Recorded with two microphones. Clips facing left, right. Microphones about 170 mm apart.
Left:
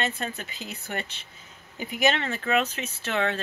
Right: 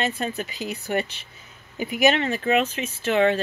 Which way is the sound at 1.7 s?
15° right (ahead or behind).